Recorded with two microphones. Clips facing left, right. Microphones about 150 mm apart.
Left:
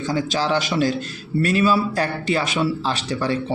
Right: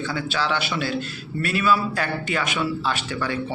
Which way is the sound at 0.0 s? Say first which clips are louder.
Left 4 dB; 40° left (ahead or behind).